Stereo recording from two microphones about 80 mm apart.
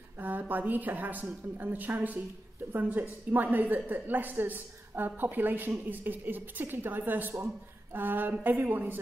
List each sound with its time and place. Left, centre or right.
0.2 s a woman's voice: right